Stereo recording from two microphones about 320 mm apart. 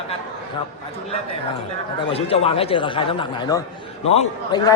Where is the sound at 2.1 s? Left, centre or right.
Centre.